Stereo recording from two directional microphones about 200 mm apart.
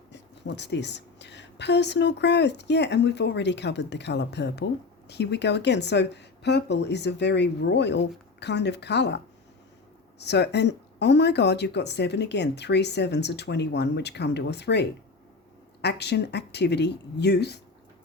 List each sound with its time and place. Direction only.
0.1 s speech: 60° left (ahead or behind)